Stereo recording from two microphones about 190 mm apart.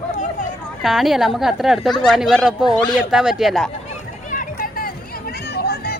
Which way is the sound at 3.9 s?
45° left (ahead or behind).